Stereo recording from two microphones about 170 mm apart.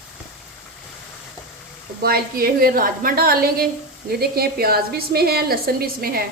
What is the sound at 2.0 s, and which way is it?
A woman's voice, 65° right (ahead or behind).